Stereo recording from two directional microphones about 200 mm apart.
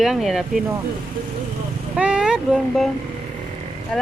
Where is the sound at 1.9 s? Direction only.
5° right (ahead or behind).